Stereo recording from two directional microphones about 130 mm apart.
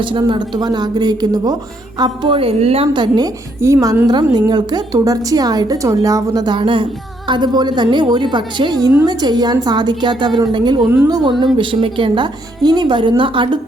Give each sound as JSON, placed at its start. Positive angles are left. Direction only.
{"t": 0.0, "sound": "a woman's voice", "side_deg": -40}